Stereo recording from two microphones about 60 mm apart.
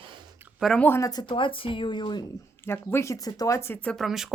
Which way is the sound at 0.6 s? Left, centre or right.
Centre.